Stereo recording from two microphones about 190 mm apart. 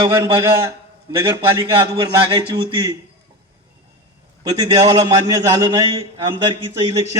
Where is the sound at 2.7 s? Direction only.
25° right (ahead or behind).